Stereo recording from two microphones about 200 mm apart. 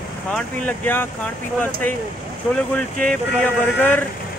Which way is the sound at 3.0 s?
5° left (ahead or behind).